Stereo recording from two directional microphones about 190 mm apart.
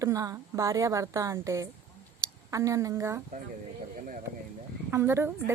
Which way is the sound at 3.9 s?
45° right (ahead or behind).